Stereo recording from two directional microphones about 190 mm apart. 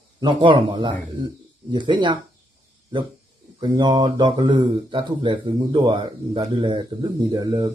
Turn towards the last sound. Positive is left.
turn(degrees=-25)  # may be behind; listen again after turning